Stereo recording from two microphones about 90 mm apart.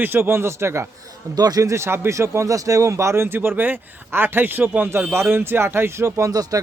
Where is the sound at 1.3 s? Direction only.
45° right (ahead or behind).